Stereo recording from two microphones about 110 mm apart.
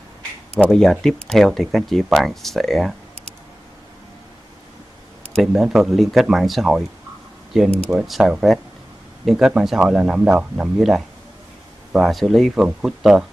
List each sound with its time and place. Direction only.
0.6 s speech: 5° left (ahead or behind)
5.3 s speech: centre (ahead or behind)